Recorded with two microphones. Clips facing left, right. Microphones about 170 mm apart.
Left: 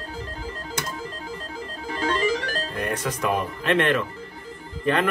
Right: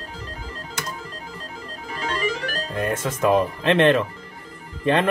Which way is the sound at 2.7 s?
25° right (ahead or behind).